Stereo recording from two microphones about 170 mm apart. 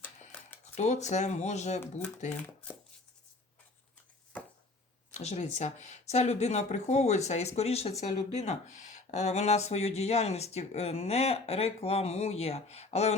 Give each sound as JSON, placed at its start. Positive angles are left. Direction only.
{"t": 0.8, "sound": "speech", "side_deg": 40}
{"t": 5.1, "sound": "speech", "side_deg": 40}